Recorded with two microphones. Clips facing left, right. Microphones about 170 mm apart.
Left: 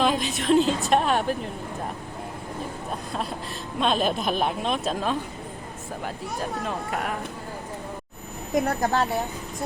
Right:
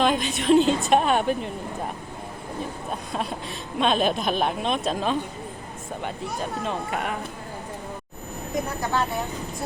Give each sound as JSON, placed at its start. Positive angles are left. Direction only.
{"t": 0.0, "sound": "speech", "side_deg": 0}
{"t": 2.9, "sound": "speech", "side_deg": 0}
{"t": 6.4, "sound": "speech", "side_deg": 0}
{"t": 8.8, "sound": "speech", "side_deg": 40}